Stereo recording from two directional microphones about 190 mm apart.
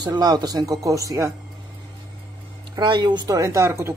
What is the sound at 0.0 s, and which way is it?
Speech, 20° right (ahead or behind).